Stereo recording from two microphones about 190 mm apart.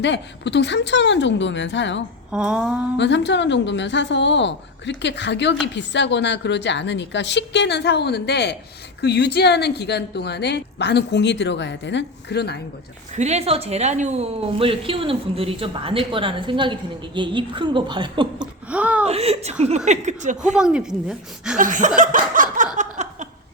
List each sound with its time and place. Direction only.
0.0 s a woman's voice: 65° left (ahead or behind)
2.3 s a woman's voice: 5° right (ahead or behind)
3.0 s a woman's voice: 65° left (ahead or behind)
13.1 s a woman's voice: 35° right (ahead or behind)
18.3 s a sound: 5° right (ahead or behind)
19.0 s speech: 30° right (ahead or behind)
20.6 s a woman's voice: 5° right (ahead or behind)
21.6 s chuckle: 40° right (ahead or behind)
23.0 s a sound: 40° right (ahead or behind)